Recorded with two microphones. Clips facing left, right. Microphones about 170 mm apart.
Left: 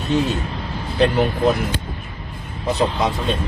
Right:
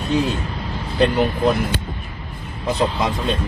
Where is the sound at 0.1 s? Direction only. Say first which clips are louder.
Left 1 dB; centre (ahead or behind).